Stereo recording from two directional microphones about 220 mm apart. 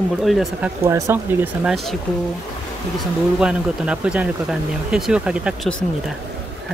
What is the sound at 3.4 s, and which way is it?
Speech, 5° right (ahead or behind).